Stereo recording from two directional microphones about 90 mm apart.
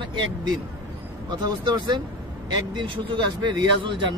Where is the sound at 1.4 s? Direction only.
50° right (ahead or behind).